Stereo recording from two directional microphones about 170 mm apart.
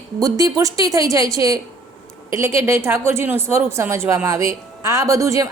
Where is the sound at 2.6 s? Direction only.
15° right (ahead or behind).